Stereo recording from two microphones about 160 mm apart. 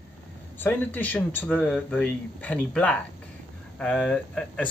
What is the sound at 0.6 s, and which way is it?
Speech, 10° left (ahead or behind).